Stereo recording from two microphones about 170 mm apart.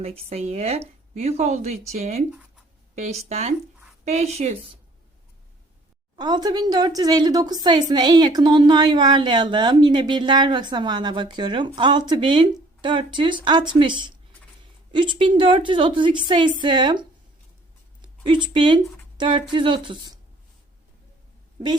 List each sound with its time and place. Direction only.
0.0 s speech: 35° right (ahead or behind)
6.1 s a woman's voice: 25° right (ahead or behind)